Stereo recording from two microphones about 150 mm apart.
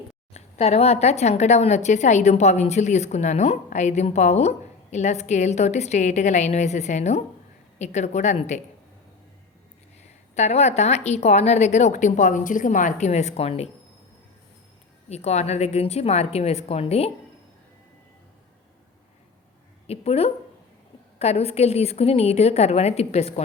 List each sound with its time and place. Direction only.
0.3 s a woman's voice: 45° left (ahead or behind)
10.3 s a woman's voice: 45° left (ahead or behind)
15.1 s a woman's voice: 45° left (ahead or behind)
19.9 s a woman's voice: 40° left (ahead or behind)